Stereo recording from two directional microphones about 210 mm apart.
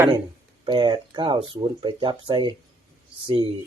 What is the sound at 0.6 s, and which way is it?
Speech, 20° right (ahead or behind).